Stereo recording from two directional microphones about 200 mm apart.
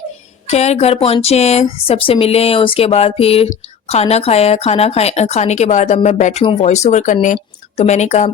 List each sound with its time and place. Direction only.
0.4 s speech: 35° left (ahead or behind)
6.4 s speech: 25° left (ahead or behind)